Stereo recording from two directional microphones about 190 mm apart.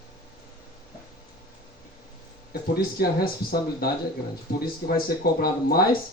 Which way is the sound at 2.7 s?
50° left (ahead or behind).